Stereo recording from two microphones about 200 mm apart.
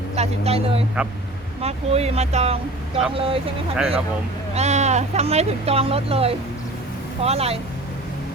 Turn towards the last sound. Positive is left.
turn(degrees=-30)  # may be behind; listen again after turning